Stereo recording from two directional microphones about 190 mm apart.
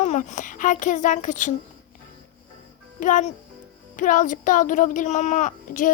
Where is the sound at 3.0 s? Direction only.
40° left (ahead or behind).